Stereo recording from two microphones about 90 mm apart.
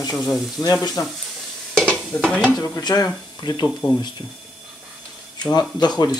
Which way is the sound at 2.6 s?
45° left (ahead or behind).